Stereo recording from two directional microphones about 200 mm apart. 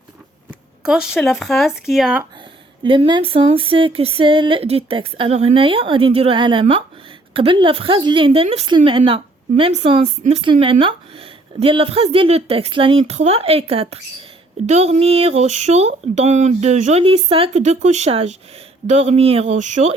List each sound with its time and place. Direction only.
0.8 s speech: 5° right (ahead or behind)
2.8 s a woman's voice: 25° right (ahead or behind)